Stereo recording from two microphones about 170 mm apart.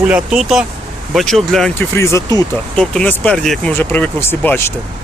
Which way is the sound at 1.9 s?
15° left (ahead or behind).